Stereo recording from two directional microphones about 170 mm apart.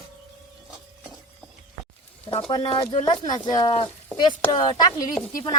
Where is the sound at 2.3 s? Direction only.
30° left (ahead or behind).